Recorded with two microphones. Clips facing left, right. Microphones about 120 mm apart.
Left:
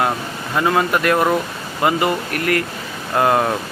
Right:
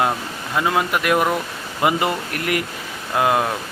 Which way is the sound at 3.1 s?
5° right (ahead or behind).